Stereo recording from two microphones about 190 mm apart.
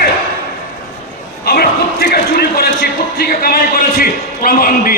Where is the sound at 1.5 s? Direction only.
55° left (ahead or behind).